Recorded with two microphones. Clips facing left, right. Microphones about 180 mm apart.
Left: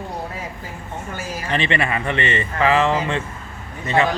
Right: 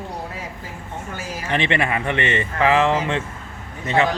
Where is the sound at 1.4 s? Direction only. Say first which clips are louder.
Right 1 dB; 15° right (ahead or behind).